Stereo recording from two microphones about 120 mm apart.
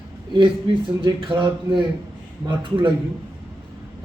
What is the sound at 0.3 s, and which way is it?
Speech, 40° right (ahead or behind).